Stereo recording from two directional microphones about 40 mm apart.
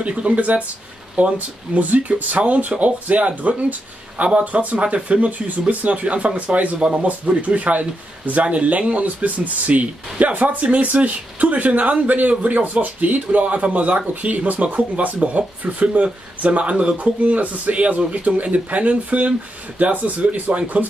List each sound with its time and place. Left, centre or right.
0.0 s speech: right